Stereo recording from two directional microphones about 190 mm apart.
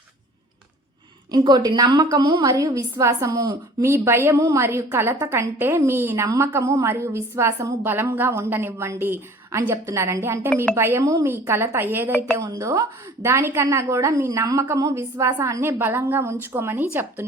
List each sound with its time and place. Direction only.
1.3 s a woman's voice: 20° right (ahead or behind)